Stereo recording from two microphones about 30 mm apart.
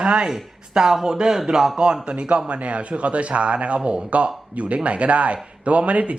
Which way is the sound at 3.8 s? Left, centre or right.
Right.